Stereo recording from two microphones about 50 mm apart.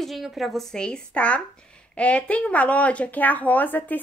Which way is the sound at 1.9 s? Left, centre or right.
Left.